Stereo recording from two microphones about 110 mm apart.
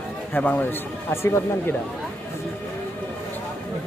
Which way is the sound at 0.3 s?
15° left (ahead or behind).